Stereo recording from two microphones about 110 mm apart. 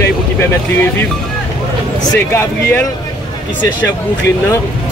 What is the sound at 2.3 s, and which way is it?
Speech, 20° left (ahead or behind).